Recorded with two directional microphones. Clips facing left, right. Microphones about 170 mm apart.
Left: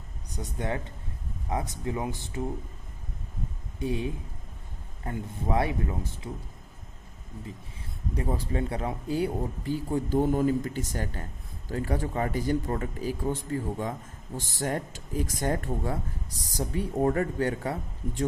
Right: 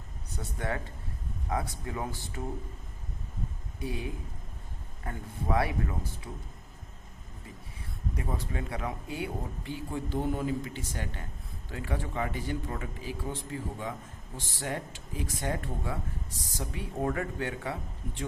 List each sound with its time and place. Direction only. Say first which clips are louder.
0.3 s speech: left 3 dB; 15° left (ahead or behind)
3.8 s speech: left 6 dB; 25° left (ahead or behind)
8.1 s speech: left 6 dB; 30° left (ahead or behind)